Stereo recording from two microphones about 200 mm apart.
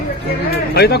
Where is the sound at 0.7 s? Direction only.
55° left (ahead or behind).